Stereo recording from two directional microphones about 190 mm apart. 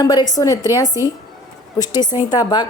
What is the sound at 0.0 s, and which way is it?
Speech, 20° left (ahead or behind).